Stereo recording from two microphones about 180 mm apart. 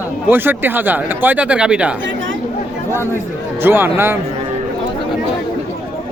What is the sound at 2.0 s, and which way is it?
Speech, 90° right.